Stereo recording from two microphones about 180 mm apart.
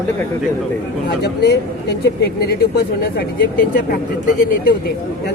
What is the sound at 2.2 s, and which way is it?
Speech, 60° left (ahead or behind).